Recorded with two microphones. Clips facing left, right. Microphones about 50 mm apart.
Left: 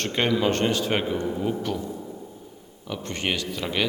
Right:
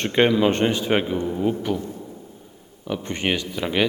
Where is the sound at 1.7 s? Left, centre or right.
Right.